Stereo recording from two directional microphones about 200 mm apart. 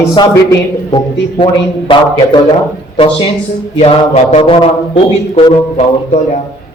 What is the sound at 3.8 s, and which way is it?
A man's voice, 30° left (ahead or behind).